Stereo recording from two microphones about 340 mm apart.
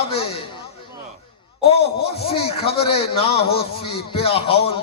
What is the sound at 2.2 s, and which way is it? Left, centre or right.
A man's voice, centre.